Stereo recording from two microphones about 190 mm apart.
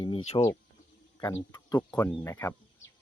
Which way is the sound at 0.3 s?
20° left (ahead or behind).